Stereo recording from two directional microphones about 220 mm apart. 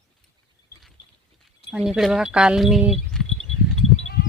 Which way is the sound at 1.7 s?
Centre (ahead or behind).